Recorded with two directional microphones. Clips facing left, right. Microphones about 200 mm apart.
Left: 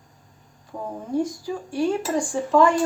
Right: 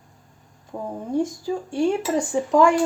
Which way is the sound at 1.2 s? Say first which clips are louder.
Right 2 dB; 25° right (ahead or behind).